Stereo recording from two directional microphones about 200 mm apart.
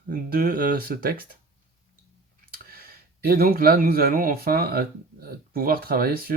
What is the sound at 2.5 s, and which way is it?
Speech, 50° right (ahead or behind).